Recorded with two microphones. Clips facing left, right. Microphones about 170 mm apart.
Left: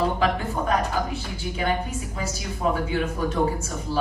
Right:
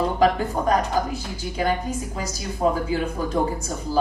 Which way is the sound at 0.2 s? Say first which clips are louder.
Right 4 dB; 40° right (ahead or behind).